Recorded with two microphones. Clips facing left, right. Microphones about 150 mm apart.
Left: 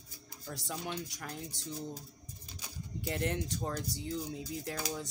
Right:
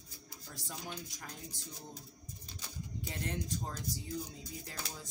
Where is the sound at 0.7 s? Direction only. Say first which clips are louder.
Left 5 dB; 80° left.